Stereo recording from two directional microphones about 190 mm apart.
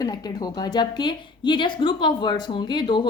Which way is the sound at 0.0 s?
20° left (ahead or behind).